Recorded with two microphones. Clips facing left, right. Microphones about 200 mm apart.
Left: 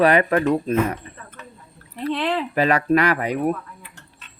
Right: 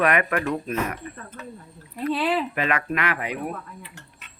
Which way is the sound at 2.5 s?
35° left (ahead or behind).